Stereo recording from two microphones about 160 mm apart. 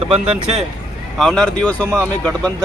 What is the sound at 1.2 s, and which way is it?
Speech, 5° left (ahead or behind).